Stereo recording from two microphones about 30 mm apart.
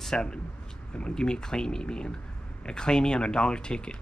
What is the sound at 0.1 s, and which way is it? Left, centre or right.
Speech, left.